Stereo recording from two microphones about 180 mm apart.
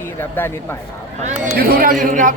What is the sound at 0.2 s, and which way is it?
Speech, 10° left (ahead or behind).